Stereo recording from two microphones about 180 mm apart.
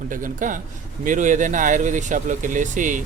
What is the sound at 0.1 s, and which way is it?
A man's voice, 45° right (ahead or behind).